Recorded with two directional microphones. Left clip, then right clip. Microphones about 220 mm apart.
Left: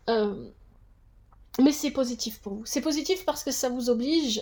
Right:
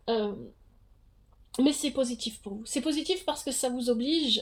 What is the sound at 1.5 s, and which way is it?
Speech, 30° left (ahead or behind).